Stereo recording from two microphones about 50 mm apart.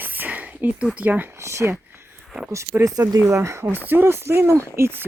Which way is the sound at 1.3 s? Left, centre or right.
Right.